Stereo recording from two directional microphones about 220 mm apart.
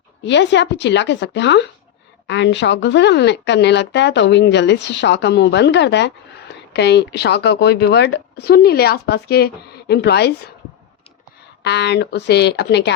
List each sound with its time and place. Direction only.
0.3 s a woman's voice: 55° left (ahead or behind)
11.6 s a woman's voice: 50° left (ahead or behind)